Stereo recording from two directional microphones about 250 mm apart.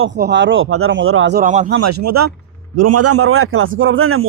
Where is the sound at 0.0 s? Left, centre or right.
Right.